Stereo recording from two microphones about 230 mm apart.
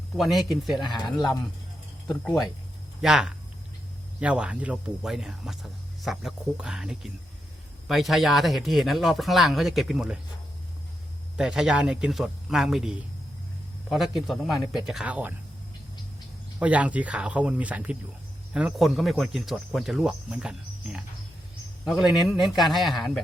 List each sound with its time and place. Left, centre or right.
0.2 s speech: centre
0.9 s speech: centre
2.0 s speech: centre
11.3 s speech: centre
16.6 s speech: centre
22.3 s speech: centre